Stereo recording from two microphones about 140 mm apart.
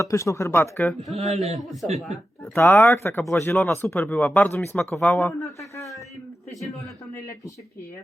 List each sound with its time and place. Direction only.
0.0 s speech: 20° left (ahead or behind)
1.1 s a man's voice: 50° right (ahead or behind)
1.4 s a man's voice: centre (ahead or behind)
2.6 s speech: 15° left (ahead or behind)
5.5 s a sound: 20° left (ahead or behind)